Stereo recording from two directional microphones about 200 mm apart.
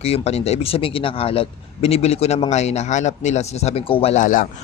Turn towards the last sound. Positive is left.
turn(degrees=40)  # may be behind; listen again after turning